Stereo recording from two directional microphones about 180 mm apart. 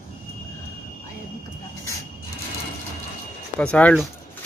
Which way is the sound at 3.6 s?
5° left (ahead or behind).